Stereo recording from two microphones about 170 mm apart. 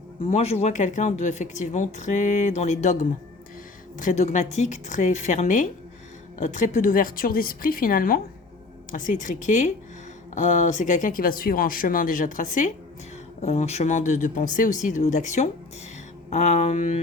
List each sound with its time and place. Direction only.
0.3 s a woman's voice: 40° left (ahead or behind)